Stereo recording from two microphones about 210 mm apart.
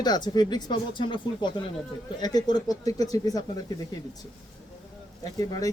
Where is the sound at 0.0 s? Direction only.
20° left (ahead or behind).